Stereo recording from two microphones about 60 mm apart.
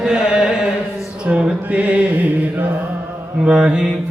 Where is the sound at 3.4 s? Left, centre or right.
Centre.